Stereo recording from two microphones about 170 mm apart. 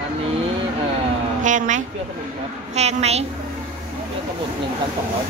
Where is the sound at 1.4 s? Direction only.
45° right (ahead or behind).